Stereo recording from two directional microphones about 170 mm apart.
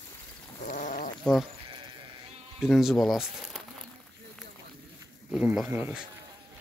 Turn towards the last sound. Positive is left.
turn(degrees=-10)  # may be behind; listen again after turning